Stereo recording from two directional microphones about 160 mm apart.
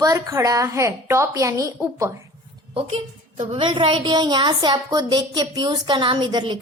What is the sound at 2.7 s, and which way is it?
A woman's voice, 35° right (ahead or behind).